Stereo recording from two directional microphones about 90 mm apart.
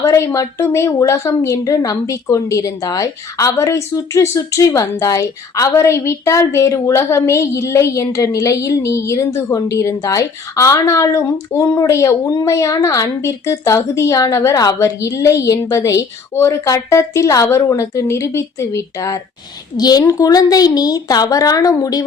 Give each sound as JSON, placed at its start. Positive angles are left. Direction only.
{"t": 0.0, "sound": "speech", "side_deg": 30}
{"t": 19.7, "sound": "a woman's voice", "side_deg": 45}